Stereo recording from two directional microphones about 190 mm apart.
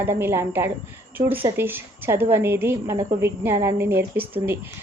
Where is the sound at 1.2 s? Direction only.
35° right (ahead or behind).